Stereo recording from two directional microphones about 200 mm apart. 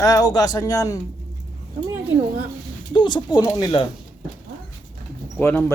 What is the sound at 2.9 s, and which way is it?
Speech, 25° left (ahead or behind).